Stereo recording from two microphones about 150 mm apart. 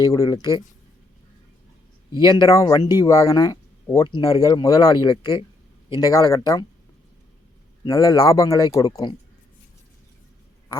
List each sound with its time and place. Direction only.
0.0 s speech: 25° left (ahead or behind)
2.1 s speech: 30° left (ahead or behind)
7.9 s speech: 25° left (ahead or behind)